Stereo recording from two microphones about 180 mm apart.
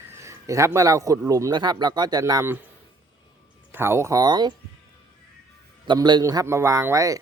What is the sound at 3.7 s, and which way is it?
Speech, 15° right (ahead or behind).